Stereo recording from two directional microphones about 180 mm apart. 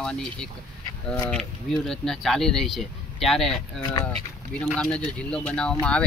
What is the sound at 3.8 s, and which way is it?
Speech, 20° left (ahead or behind).